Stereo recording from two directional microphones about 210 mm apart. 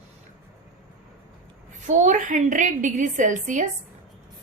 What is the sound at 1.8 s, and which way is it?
A woman's voice, 35° right (ahead or behind).